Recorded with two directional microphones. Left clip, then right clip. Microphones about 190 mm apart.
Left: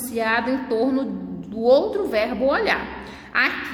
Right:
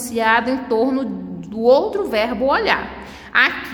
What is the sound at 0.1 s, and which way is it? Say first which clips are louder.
A woman's voice: right 5 dB; 10° right (ahead or behind).